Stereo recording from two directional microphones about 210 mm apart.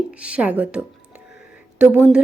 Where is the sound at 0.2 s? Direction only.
5° right (ahead or behind).